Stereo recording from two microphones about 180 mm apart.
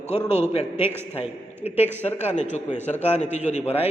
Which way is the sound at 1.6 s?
35° left (ahead or behind).